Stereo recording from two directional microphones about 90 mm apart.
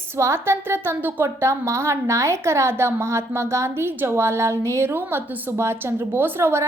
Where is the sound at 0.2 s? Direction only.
30° right (ahead or behind).